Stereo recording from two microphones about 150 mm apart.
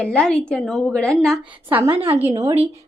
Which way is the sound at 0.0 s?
5° left (ahead or behind).